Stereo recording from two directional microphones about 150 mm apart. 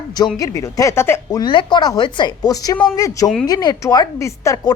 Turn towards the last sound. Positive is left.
turn(degrees=20)  # may be behind; listen again after turning